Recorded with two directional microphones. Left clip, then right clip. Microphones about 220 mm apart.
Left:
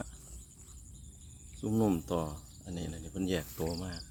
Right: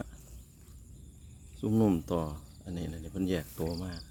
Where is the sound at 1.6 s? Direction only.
30° right (ahead or behind).